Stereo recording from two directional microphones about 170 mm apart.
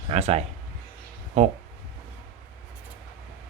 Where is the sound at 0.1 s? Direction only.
40° right (ahead or behind).